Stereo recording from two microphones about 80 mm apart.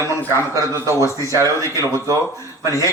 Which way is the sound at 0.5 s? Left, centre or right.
Right.